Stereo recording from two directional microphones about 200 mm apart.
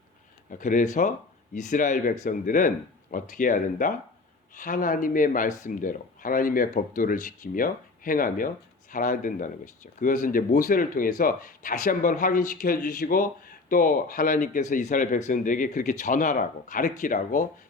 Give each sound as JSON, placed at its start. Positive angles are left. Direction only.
{"t": 0.5, "sound": "speech", "side_deg": 40}